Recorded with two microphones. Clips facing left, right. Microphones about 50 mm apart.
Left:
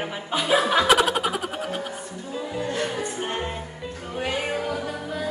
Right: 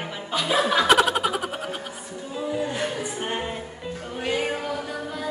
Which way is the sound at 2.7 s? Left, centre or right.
Centre.